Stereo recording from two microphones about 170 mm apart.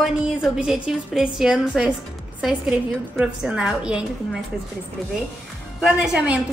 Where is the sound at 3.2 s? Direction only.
5° right (ahead or behind).